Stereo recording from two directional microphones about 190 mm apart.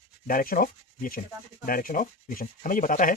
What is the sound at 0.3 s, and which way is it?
Speech, 45° left (ahead or behind).